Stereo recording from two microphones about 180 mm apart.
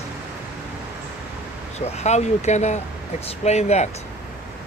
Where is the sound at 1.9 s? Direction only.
40° left (ahead or behind).